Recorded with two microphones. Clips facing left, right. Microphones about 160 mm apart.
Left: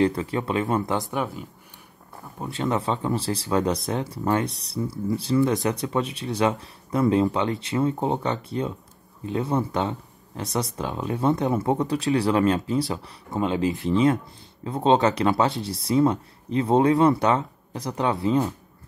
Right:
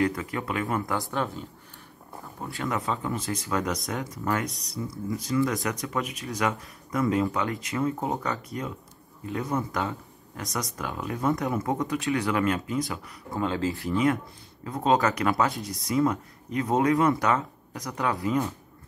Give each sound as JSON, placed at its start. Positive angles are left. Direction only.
{"t": 0.0, "sound": "speech", "side_deg": 30}
{"t": 2.4, "sound": "speech", "side_deg": 25}